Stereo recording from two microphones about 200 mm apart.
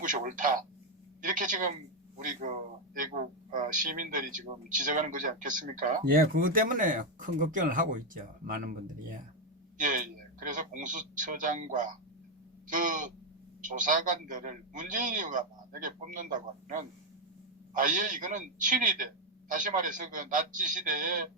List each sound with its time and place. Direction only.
0.0 s a man's voice: 40° right (ahead or behind)